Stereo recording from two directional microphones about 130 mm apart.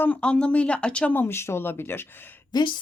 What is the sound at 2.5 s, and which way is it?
Speech, 30° left (ahead or behind).